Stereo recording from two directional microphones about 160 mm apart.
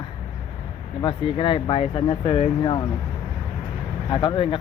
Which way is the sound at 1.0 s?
30° left (ahead or behind).